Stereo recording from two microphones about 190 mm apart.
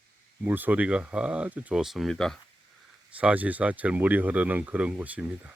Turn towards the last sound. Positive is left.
turn(degrees=-5)  # may be behind; listen again after turning